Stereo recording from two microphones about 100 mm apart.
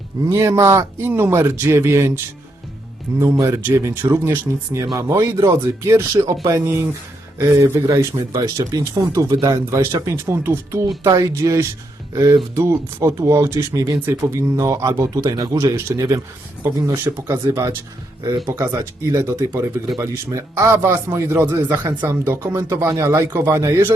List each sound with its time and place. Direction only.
0.3 s speech: 30° right (ahead or behind)
3.4 s speech: 30° right (ahead or behind)
9.6 s speech: 30° right (ahead or behind)